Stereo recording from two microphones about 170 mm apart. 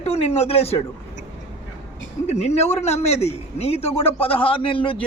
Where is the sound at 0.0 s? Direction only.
40° left (ahead or behind).